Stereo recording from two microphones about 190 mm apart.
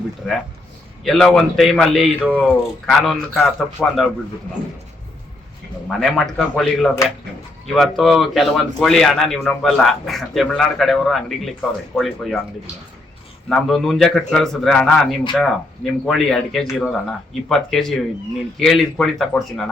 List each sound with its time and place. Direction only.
1.0 s speech: centre (ahead or behind)
6.0 s speech: centre (ahead or behind)
13.5 s speech: centre (ahead or behind)